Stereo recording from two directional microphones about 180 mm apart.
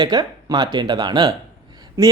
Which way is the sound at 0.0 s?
25° right (ahead or behind).